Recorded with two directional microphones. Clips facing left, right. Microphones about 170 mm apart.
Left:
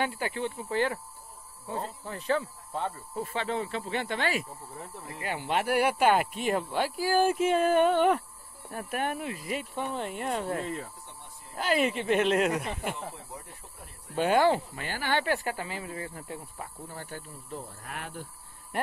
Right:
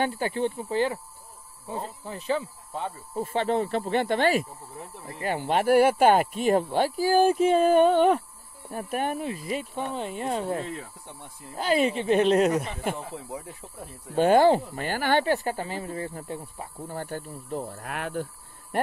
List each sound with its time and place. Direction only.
0.0 s speech: 30° right (ahead or behind)
0.7 s speech: 15° right (ahead or behind)
3.4 s speech: 55° right (ahead or behind)
4.0 s speech: 35° right (ahead or behind)
7.6 s speech: 20° right (ahead or behind); by 12.9 s 40° right (ahead or behind)
14.1 s speech: 35° right (ahead or behind)
15.1 s speech: 30° right (ahead or behind)
17.0 s speech: 50° right (ahead or behind); by 18.2 s 75° right (ahead or behind)